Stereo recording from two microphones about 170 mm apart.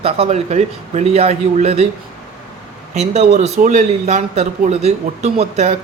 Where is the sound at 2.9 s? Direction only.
40° right (ahead or behind).